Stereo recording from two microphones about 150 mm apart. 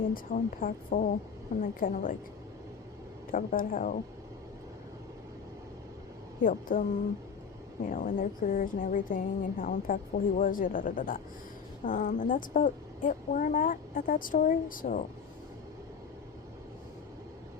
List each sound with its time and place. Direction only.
0.1 s a woman's voice: 65° left (ahead or behind)
3.3 s a woman's voice: 65° left (ahead or behind)
6.4 s a woman's voice: 65° left (ahead or behind)
7.9 s a woman's voice: 60° left (ahead or behind)